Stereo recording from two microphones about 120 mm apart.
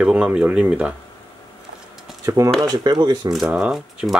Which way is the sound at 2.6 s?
35° right (ahead or behind).